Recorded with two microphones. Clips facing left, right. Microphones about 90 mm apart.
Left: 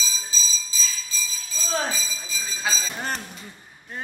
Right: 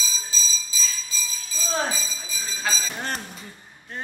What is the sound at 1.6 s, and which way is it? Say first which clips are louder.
Fire alarm: even; 5° right (ahead or behind).